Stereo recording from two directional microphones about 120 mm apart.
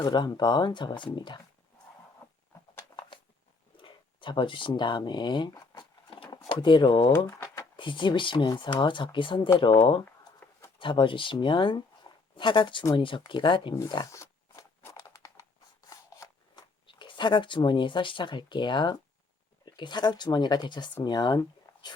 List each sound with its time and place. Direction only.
0.0 s speech: 40° left (ahead or behind)
3.8 s a sound: 45° left (ahead or behind)
6.6 s speech: 40° left (ahead or behind)
7.3 s typing: 25° left (ahead or behind)
7.8 s speech: 40° left (ahead or behind)
13.7 s crunch: 35° left (ahead or behind)
15.9 s shuffling cards: 35° left (ahead or behind)
19.6 s speech: 40° left (ahead or behind)